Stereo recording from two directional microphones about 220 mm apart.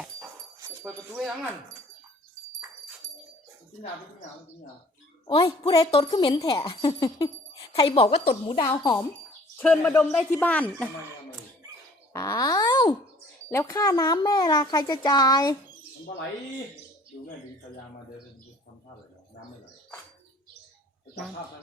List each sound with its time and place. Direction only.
0.6 s dog: 15° right (ahead or behind)
5.2 s a woman's voice: 25° left (ahead or behind)
9.6 s a child's voice: 5° left (ahead or behind)
12.1 s wail: 15° left (ahead or behind)
13.5 s a child's voice: 15° left (ahead or behind)